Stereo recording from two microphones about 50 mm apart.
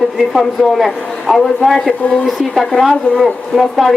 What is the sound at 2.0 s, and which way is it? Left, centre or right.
Speech, left.